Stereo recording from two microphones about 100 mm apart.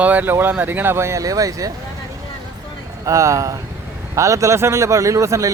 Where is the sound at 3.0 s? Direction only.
35° right (ahead or behind).